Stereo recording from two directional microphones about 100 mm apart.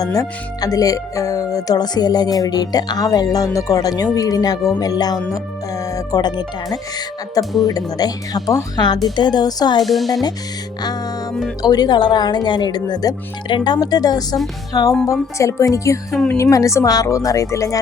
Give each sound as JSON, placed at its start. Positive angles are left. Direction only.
{"t": 0.0, "sound": "speech", "side_deg": 35}
{"t": 9.8, "sound": "speech", "side_deg": 0}
{"t": 11.6, "sound": "speech", "side_deg": 45}